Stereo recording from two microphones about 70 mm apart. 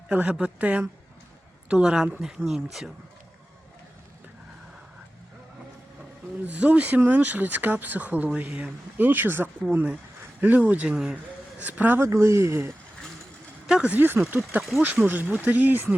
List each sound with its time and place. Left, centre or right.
0.1 s speech: centre
6.5 s speech: centre
11.9 s speech: right
13.7 s a sound: centre
13.9 s speech: right